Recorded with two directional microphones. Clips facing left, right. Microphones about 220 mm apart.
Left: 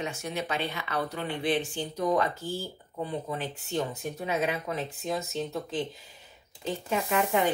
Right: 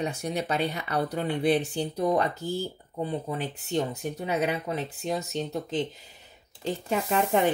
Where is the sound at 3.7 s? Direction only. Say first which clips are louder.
Right 3 dB; 35° right (ahead or behind).